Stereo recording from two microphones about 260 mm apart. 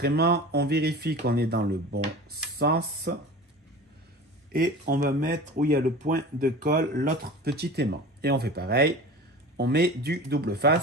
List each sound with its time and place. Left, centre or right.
0.0 s speech: right
4.5 s speech: right